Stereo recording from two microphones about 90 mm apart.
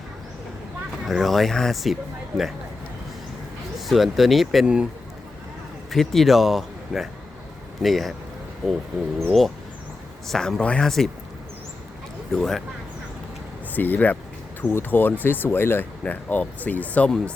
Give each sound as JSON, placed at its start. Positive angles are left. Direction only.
{"t": 1.0, "sound": "speech", "side_deg": 0}
{"t": 3.8, "sound": "speech", "side_deg": 0}
{"t": 5.9, "sound": "speech", "side_deg": 5}
{"t": 10.2, "sound": "speech", "side_deg": 5}
{"t": 12.3, "sound": "speech", "side_deg": 5}
{"t": 13.7, "sound": "speech", "side_deg": 20}